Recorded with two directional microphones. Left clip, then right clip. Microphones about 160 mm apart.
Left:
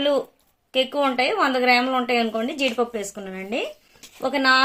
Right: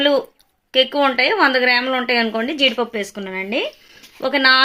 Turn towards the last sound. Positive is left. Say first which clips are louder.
# right 4 dB
turn(degrees=-40)  # may be behind; listen again after turning